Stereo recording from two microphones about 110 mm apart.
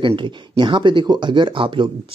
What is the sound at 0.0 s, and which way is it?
Speech, 50° right (ahead or behind).